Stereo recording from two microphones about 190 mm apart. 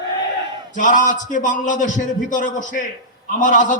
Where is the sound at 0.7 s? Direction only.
45° left (ahead or behind).